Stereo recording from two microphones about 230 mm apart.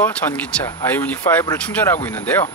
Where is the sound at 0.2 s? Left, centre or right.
Centre.